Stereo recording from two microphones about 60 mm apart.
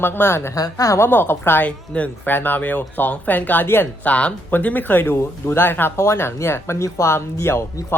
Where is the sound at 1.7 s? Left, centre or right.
Left.